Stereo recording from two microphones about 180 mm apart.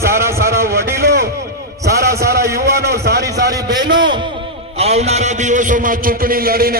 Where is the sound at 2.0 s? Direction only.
60° right (ahead or behind).